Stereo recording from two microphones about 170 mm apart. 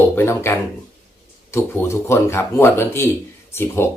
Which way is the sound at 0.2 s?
15° left (ahead or behind).